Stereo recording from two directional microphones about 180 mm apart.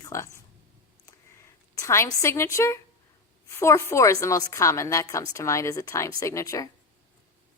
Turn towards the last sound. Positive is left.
turn(degrees=20)  # may be behind; listen again after turning